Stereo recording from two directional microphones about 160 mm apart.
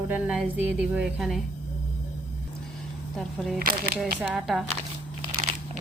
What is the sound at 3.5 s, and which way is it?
Speech, 70° right (ahead or behind).